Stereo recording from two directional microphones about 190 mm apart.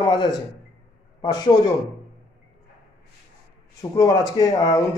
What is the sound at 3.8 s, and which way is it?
A man's voice, 20° left (ahead or behind).